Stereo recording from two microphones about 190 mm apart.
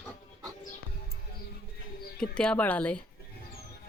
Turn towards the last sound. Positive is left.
turn(degrees=10)  # may be behind; listen again after turning